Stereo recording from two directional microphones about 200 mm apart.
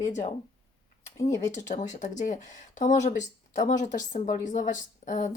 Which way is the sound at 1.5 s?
35° left (ahead or behind).